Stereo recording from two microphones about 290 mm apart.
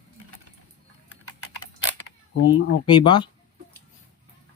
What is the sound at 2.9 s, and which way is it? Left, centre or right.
Speech, centre.